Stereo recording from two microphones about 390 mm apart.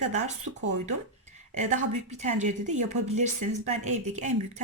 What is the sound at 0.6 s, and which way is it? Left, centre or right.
A woman's voice, right.